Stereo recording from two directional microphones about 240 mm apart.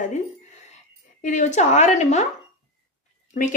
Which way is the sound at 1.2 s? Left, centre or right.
Left.